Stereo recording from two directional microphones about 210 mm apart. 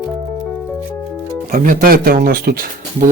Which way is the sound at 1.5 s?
40° right (ahead or behind).